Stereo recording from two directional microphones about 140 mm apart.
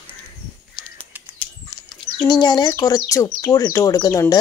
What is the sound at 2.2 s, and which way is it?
A woman's voice, 30° left (ahead or behind).